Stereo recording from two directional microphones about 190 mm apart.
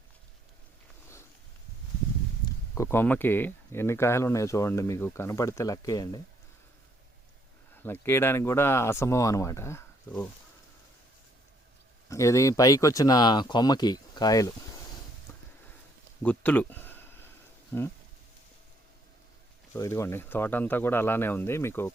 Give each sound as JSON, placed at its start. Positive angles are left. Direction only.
{"t": 2.4, "sound": "speech", "side_deg": 15}
{"t": 7.8, "sound": "speech", "side_deg": 10}
{"t": 12.0, "sound": "speech", "side_deg": 15}
{"t": 15.3, "sound": "a sound", "side_deg": 15}
{"t": 17.7, "sound": "speech", "side_deg": 10}
{"t": 19.7, "sound": "speech", "side_deg": 15}